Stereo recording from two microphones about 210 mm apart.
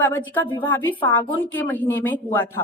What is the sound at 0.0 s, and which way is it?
A woman's voice, 10° left (ahead or behind).